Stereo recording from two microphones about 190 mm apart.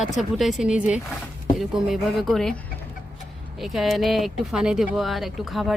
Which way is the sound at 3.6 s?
Centre (ahead or behind).